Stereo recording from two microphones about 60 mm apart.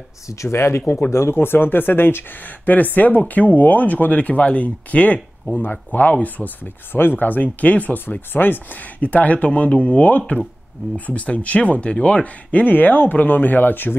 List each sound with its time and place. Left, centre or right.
0.3 s speech: left